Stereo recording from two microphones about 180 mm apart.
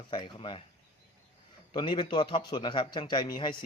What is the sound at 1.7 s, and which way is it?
A man's voice, 25° left (ahead or behind).